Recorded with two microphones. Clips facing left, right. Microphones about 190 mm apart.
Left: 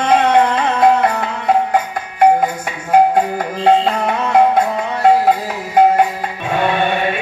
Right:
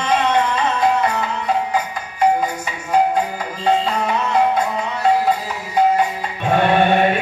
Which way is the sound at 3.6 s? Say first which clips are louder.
Left 4 dB; 55° left (ahead or behind).